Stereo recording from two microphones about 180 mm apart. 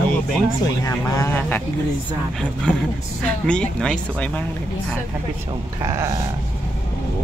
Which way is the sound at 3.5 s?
5° left (ahead or behind).